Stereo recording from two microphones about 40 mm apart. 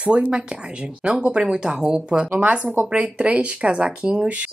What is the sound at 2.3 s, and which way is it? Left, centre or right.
Speech, right.